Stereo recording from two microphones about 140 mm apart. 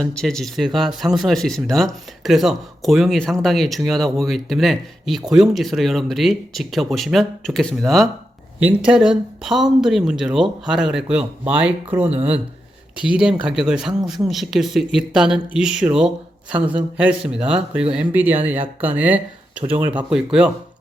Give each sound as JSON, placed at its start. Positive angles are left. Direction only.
{"t": 0.0, "sound": "speech", "side_deg": 5}
{"t": 8.5, "sound": "speech", "side_deg": -10}
{"t": 12.0, "sound": "speech", "side_deg": -45}
{"t": 13.4, "sound": "speech", "side_deg": -5}